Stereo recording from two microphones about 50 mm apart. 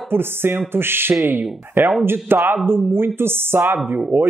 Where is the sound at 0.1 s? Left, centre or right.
Right.